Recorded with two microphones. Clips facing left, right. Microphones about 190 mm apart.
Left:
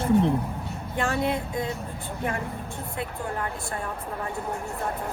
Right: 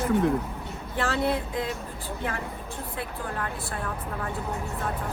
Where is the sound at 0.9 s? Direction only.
15° left (ahead or behind).